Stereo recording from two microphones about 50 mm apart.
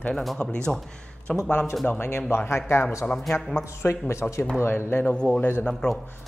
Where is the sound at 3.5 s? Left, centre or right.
Left.